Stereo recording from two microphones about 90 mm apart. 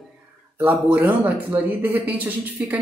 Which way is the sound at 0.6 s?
15° right (ahead or behind).